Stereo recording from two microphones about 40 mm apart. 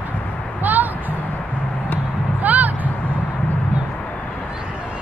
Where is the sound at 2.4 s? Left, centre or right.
Right.